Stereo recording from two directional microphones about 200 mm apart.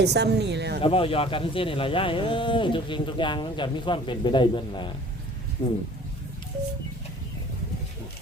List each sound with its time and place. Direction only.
0.0 s speech: 55° right (ahead or behind)
0.8 s speech: 30° left (ahead or behind)